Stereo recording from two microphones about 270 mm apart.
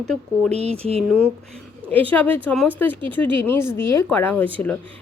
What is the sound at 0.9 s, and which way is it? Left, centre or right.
Speech, right.